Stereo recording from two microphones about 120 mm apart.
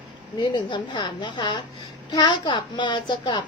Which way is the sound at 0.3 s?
40° left (ahead or behind).